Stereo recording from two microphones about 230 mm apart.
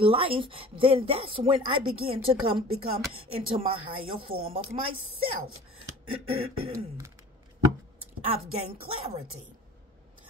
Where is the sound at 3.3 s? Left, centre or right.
Right.